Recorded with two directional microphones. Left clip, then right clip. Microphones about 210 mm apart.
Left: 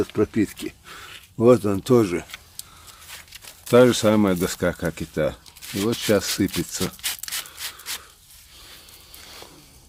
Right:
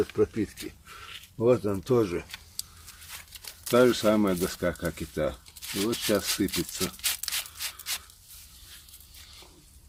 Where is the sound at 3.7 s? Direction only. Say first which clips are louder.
Left 6 dB; 55° left (ahead or behind).